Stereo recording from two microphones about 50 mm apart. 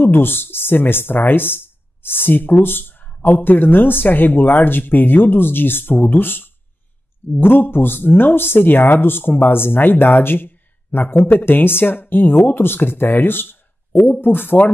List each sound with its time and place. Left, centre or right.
0.0 s speech: left